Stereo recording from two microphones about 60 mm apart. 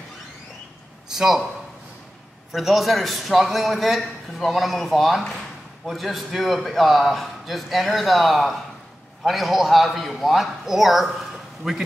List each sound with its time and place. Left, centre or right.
1.0 s speech: centre
2.5 s a man's voice: centre